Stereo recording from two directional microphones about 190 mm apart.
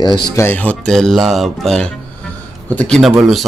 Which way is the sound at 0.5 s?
10° left (ahead or behind).